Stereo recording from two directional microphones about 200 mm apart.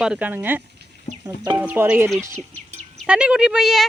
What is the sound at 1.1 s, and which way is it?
Music, 30° left (ahead or behind).